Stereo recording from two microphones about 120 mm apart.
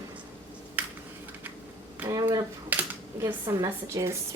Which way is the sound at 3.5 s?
25° right (ahead or behind).